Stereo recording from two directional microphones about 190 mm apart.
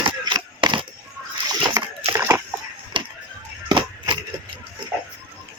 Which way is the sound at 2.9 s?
25° right (ahead or behind).